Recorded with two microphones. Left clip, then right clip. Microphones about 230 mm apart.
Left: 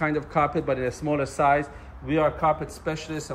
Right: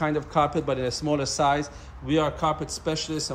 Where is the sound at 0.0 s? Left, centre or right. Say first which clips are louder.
Even; centre.